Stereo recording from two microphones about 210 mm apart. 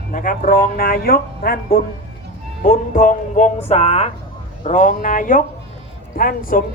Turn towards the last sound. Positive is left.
turn(degrees=45)  # may be behind; listen again after turning